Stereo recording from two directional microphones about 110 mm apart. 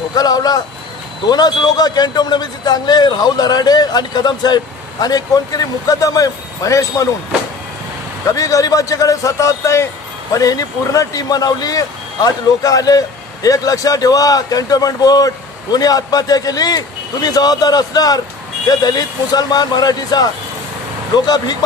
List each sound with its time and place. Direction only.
0.1 s speech: 35° left (ahead or behind)
8.3 s speech: 30° left (ahead or behind)